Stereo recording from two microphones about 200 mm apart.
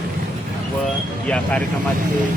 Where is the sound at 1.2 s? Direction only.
5° left (ahead or behind).